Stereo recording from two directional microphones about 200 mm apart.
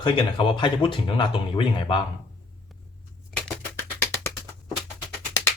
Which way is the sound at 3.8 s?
15° left (ahead or behind).